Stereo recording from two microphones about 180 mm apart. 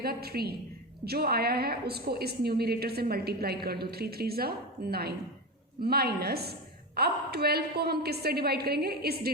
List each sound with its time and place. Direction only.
0.0 s a woman's voice: 60° right (ahead or behind)